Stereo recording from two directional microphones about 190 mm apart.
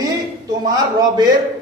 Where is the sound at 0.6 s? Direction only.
20° right (ahead or behind).